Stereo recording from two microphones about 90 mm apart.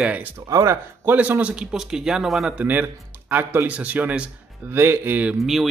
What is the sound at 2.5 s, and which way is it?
Speech, 20° right (ahead or behind).